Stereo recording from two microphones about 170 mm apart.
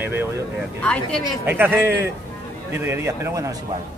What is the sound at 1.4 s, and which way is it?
Speech, 10° right (ahead or behind).